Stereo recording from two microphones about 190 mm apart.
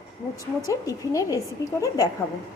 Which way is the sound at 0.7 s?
15° left (ahead or behind).